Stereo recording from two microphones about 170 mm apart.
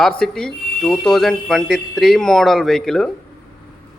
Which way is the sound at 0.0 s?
5° left (ahead or behind).